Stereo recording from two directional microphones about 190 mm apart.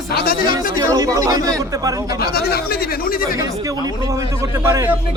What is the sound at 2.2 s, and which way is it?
Speech, 55° left (ahead or behind).